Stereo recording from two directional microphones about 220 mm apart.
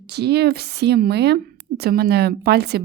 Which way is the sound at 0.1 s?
45° right (ahead or behind).